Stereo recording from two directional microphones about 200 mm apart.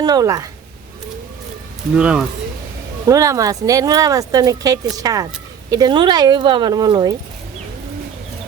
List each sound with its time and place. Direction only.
0.0 s speech: 20° right (ahead or behind)
2.0 s speech: 5° right (ahead or behind)
3.1 s speech: 15° right (ahead or behind)